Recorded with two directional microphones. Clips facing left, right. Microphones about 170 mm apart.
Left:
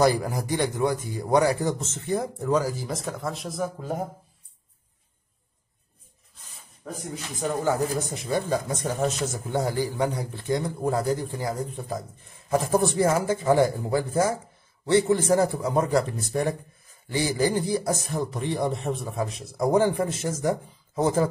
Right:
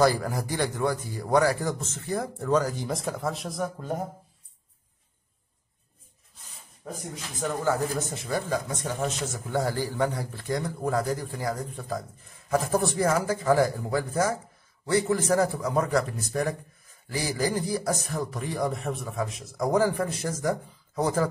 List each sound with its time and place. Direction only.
0.0 s a man's voice: 15° left (ahead or behind); by 3.9 s centre (ahead or behind)
7.6 s a man's voice: 15° left (ahead or behind)
8.8 s speech: 40° left (ahead or behind)
9.5 s a man's voice: 20° left (ahead or behind)